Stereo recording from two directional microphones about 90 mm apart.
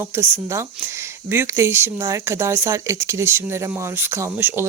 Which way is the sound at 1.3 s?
30° right (ahead or behind).